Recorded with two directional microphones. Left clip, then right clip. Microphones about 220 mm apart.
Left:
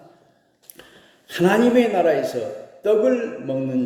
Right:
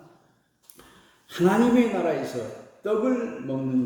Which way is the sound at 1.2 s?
10° right (ahead or behind).